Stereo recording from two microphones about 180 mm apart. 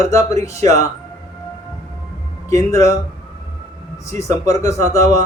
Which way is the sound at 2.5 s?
15° left (ahead or behind).